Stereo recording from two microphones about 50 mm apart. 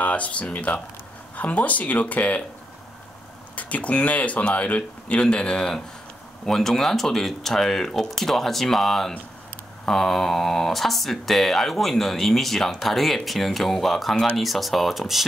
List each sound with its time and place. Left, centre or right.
0.0 s speech: left
3.5 s speech: left; by 15.2 s centre